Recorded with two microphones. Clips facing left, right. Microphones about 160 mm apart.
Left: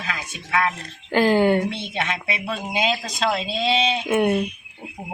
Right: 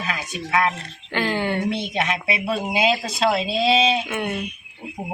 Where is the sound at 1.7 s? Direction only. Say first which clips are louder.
Right 3 dB; 10° right (ahead or behind).